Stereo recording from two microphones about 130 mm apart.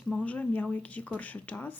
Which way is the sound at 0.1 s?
10° left (ahead or behind).